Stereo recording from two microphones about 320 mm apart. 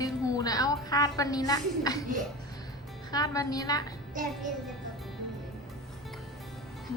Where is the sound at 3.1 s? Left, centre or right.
Centre.